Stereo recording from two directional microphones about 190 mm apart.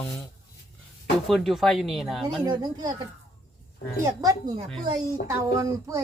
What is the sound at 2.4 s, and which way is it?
Speech, 20° right (ahead or behind).